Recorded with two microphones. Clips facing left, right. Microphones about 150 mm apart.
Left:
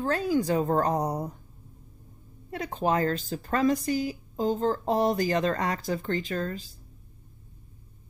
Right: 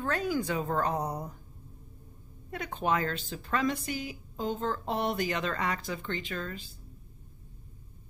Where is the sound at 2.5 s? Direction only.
35° left (ahead or behind).